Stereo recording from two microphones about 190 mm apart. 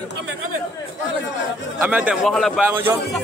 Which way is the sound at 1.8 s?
10° right (ahead or behind).